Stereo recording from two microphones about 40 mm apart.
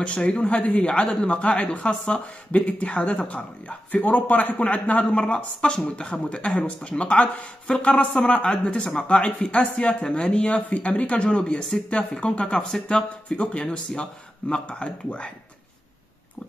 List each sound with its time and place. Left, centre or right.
0.0 s a man's voice: left
4.0 s a man's voice: left
7.9 s a man's voice: left
11.2 s speech: left
12.5 s speech: centre; by 15.3 s left